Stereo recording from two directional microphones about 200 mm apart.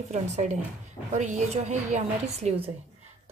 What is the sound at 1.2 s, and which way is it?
Speech, 35° right (ahead or behind).